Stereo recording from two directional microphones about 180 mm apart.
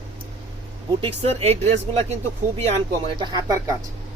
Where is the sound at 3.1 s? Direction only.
25° right (ahead or behind).